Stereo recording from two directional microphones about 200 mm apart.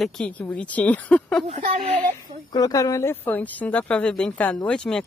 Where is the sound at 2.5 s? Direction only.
20° left (ahead or behind).